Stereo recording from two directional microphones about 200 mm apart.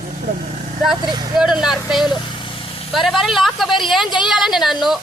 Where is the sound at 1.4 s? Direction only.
5° right (ahead or behind).